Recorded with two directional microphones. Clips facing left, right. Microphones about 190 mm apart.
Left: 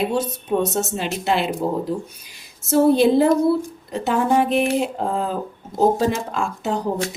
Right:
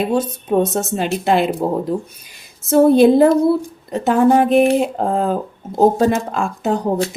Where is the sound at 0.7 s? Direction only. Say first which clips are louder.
Right 4 dB; 50° right (ahead or behind).